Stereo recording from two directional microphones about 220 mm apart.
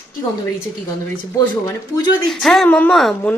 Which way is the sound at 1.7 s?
15° left (ahead or behind).